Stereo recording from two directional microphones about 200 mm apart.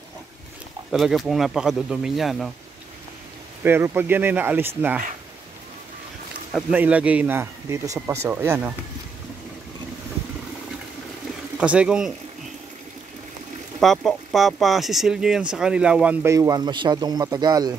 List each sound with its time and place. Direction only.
0.9 s speech: centre (ahead or behind)
3.6 s speech: 10° right (ahead or behind)
6.5 s speech: 5° right (ahead or behind)
11.5 s speech: 5° right (ahead or behind)
13.7 s speech: centre (ahead or behind); by 17.7 s 20° right (ahead or behind)